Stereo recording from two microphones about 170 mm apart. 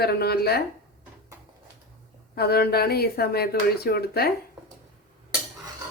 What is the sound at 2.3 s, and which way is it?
Speech, 65° left (ahead or behind).